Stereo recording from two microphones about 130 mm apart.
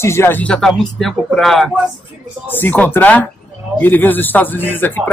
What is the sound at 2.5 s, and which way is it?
Speech, 15° left (ahead or behind).